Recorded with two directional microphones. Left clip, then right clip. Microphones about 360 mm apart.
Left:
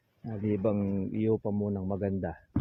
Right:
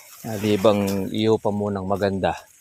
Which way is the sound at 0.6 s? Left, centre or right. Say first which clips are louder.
Right 14 dB; centre.